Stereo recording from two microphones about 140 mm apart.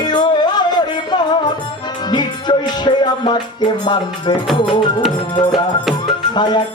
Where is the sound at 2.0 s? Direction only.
30° left (ahead or behind).